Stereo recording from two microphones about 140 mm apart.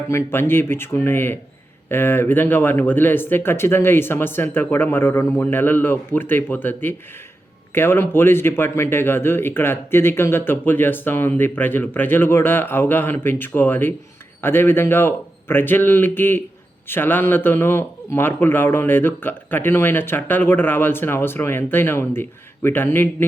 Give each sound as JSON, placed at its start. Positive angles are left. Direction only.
{"t": 0.1, "sound": "a man's voice", "side_deg": 15}